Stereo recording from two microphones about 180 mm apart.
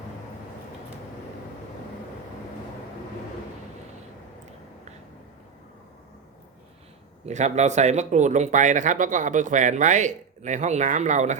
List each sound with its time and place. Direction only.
7.3 s speech: 40° right (ahead or behind)